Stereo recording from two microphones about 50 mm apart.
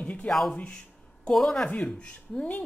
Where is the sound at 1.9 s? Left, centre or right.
Left.